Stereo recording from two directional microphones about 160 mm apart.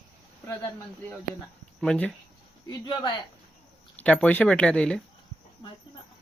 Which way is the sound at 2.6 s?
30° left (ahead or behind).